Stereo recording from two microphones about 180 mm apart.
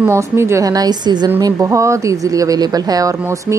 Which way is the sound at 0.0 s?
15° right (ahead or behind).